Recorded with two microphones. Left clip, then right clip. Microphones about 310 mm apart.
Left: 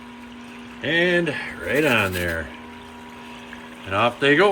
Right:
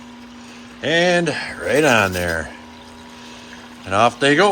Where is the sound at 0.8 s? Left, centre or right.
Right.